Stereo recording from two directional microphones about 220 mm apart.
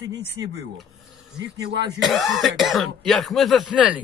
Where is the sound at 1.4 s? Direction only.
50° right (ahead or behind).